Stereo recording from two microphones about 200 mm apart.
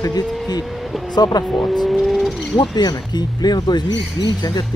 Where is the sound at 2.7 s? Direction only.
20° left (ahead or behind).